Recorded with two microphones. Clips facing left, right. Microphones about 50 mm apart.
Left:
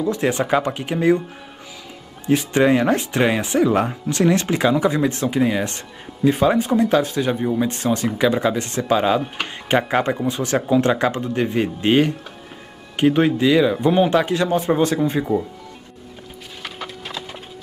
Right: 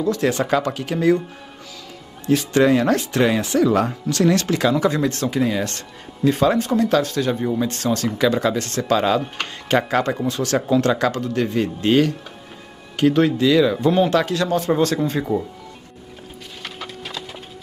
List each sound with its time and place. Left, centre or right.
0.0 s speech: left
2.2 s speech: left
15.3 s speech: centre
16.6 s a sound: centre